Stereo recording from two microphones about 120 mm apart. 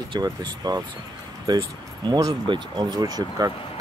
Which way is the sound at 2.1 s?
30° right (ahead or behind).